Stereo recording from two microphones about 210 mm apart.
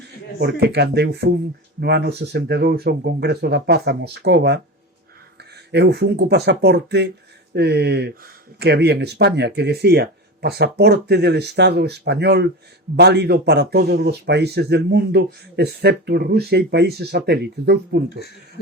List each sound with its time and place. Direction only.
0.3 s speech: 50° right (ahead or behind)
5.7 s speech: 50° right (ahead or behind)